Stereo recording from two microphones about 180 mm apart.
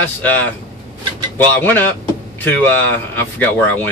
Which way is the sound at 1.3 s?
10° left (ahead or behind).